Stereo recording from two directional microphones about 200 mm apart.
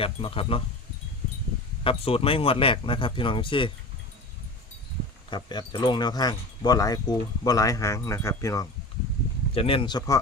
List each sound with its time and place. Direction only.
0.0 s speech: 25° left (ahead or behind)
1.8 s speech: 30° left (ahead or behind)
5.3 s speech: 20° left (ahead or behind)
9.6 s speech: 25° left (ahead or behind)